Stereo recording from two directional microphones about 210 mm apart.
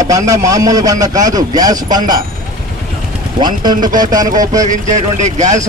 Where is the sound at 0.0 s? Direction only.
15° right (ahead or behind).